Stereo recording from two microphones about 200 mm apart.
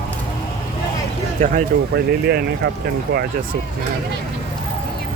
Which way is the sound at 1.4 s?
45° right (ahead or behind).